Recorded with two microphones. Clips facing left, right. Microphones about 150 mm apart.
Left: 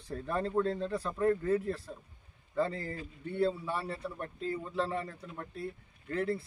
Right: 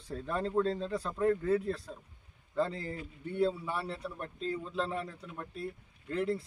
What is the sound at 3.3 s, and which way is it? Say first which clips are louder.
Speech: even; 10° right (ahead or behind).